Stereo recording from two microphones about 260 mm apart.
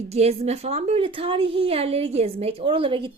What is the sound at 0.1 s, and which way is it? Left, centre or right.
Speech, right.